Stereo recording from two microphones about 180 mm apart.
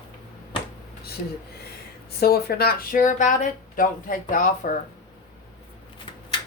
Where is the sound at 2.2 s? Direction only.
60° left (ahead or behind).